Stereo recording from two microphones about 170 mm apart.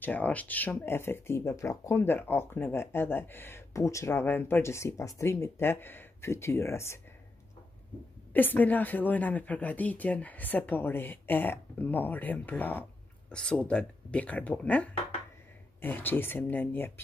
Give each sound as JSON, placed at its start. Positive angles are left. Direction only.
{"t": 0.0, "sound": "speech", "side_deg": 10}
{"t": 8.3, "sound": "speech", "side_deg": 10}